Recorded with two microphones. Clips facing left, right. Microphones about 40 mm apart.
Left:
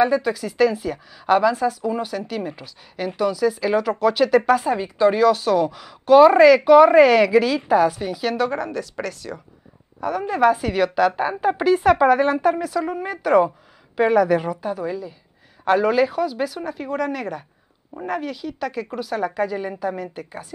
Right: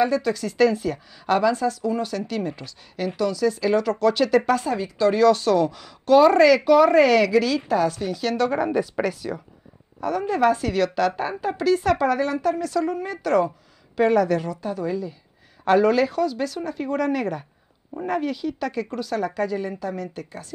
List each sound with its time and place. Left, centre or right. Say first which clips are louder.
0.0 s a woman's voice: left 2 dB; centre
4.7 s speech: left 3 dB; left
5.1 s a woman's voice: even; centre
8.5 s speech: right 4 dB; centre
9.9 s a woman's voice: left 1 dB; centre
11.4 s speech: left 4 dB; left
12.6 s a woman's voice: even; centre